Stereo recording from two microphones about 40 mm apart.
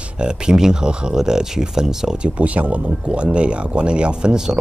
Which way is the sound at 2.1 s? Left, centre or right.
Right.